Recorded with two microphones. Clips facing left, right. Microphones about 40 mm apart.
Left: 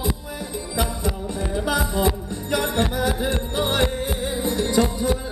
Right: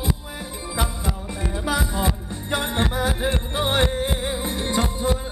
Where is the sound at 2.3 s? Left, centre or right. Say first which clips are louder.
Left 2 dB; right.